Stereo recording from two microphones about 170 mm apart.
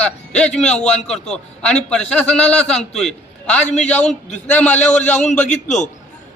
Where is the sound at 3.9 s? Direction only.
5° left (ahead or behind).